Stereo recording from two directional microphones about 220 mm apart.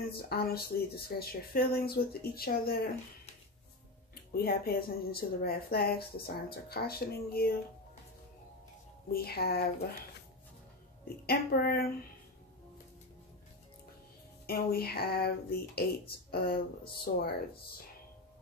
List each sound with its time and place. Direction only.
0.1 s speech: 45° left (ahead or behind)
4.1 s speech: 45° left (ahead or behind)
9.1 s speech: 45° left (ahead or behind)
11.2 s speech: 45° left (ahead or behind)
14.4 s speech: 45° left (ahead or behind)